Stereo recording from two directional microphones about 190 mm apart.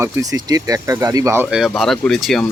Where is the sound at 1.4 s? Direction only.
5° right (ahead or behind).